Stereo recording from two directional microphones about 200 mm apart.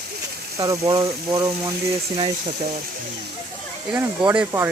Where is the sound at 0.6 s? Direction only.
15° right (ahead or behind).